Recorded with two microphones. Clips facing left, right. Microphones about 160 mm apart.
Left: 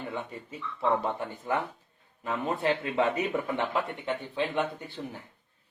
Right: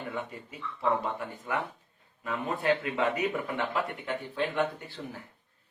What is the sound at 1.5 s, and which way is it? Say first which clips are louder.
Speech: left 3 dB; 30° left (ahead or behind).